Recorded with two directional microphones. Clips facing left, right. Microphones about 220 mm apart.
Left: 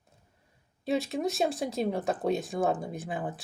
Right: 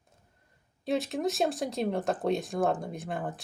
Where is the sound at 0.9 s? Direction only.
Centre (ahead or behind).